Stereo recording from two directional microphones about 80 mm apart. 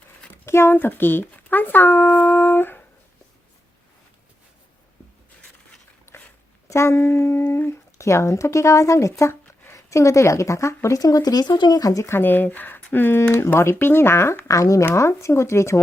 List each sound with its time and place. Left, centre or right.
0.4 s speech: left
6.7 s speech: left
12.1 s speech: left